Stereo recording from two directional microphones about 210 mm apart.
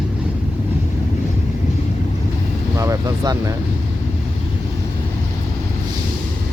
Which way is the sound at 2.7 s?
15° right (ahead or behind).